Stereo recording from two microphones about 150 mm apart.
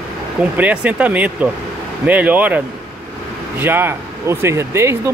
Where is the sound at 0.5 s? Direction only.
10° right (ahead or behind).